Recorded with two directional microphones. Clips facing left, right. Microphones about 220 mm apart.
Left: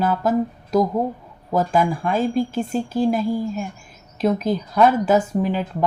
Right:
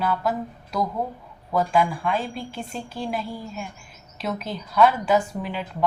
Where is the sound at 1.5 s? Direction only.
45° left (ahead or behind).